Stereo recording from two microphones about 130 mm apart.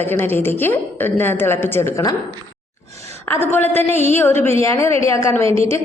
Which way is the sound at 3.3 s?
15° left (ahead or behind).